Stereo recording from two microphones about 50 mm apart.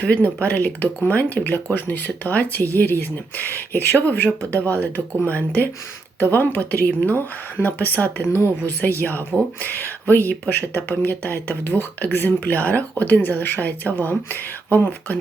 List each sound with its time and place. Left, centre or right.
0.0 s speech: left
12.5 s speech: left